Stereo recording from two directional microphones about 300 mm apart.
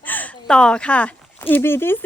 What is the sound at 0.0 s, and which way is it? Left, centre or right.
Speech, centre.